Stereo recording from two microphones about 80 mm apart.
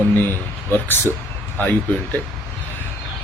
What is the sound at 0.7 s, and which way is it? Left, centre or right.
Speech, left.